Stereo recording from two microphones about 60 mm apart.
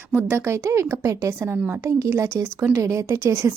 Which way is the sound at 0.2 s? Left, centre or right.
Right.